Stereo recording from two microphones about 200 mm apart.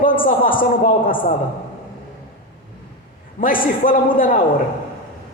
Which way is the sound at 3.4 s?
45° left (ahead or behind).